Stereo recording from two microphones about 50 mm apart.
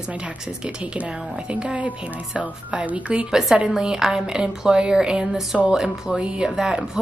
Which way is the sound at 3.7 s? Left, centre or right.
Centre.